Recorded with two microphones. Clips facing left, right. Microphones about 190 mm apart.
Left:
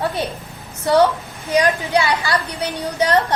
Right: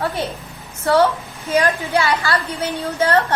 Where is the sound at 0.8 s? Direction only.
15° left (ahead or behind).